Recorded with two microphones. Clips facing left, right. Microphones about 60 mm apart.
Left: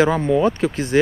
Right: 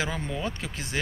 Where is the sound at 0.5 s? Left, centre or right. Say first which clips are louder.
Left 15 dB; left.